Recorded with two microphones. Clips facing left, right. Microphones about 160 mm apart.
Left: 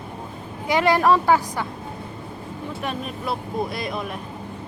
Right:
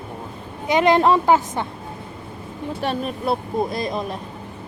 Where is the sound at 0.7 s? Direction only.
20° right (ahead or behind).